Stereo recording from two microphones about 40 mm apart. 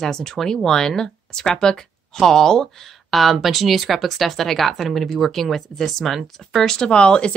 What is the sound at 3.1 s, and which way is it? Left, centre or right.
Speech, centre.